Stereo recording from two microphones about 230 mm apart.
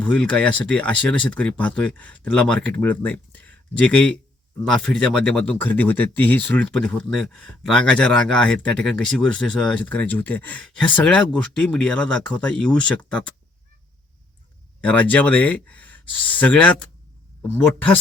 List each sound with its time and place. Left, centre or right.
0.0 s speech: centre
14.8 s speech: centre